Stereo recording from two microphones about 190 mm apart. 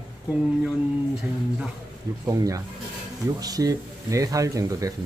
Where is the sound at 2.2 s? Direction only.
20° right (ahead or behind).